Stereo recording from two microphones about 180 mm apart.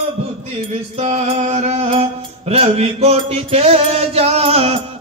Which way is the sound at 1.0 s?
40° right (ahead or behind).